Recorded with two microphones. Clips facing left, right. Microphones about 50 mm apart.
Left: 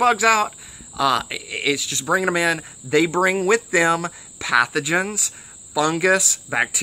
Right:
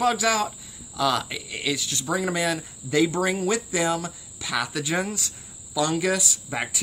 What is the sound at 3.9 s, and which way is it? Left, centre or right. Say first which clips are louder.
Speech: left 5 dB; left.